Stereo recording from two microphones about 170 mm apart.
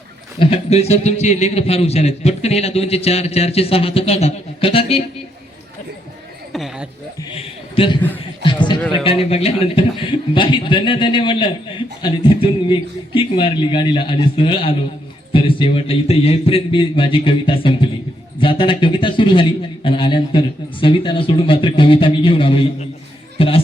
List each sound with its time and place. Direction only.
0.3 s a man's voice: 35° left (ahead or behind)
6.5 s chuckle: centre (ahead or behind)
7.3 s a sound: 30° left (ahead or behind)
9.0 s a man's voice: 35° left (ahead or behind)